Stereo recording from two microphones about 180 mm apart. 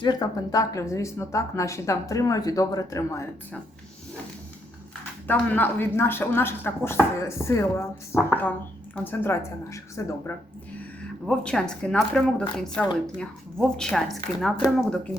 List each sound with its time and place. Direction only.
0.0 s speech: 20° left (ahead or behind)
5.3 s speech: 10° left (ahead or behind)
11.3 s speech: 5° left (ahead or behind)